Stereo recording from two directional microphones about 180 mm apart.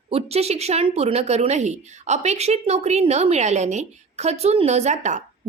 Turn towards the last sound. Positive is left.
turn(degrees=-40)  # may be behind; listen again after turning